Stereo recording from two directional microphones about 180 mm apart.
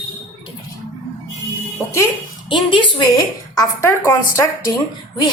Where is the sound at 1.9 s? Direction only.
20° left (ahead or behind).